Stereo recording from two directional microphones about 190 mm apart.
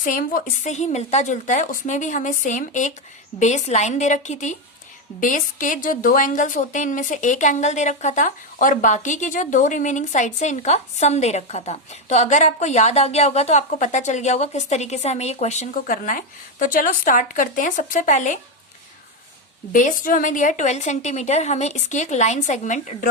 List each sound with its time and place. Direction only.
0.0 s a woman's voice: 45° left (ahead or behind)
19.7 s a woman's voice: 45° left (ahead or behind)